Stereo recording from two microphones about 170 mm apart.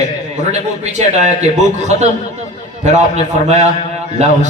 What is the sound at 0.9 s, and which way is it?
A man's voice, 45° right (ahead or behind).